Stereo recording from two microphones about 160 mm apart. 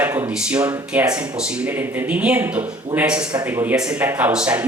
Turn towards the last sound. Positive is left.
turn(degrees=-10)  # may be behind; listen again after turning